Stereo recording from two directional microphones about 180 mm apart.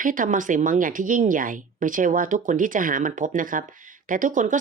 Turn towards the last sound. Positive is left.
turn(degrees=-45)  # may be behind; listen again after turning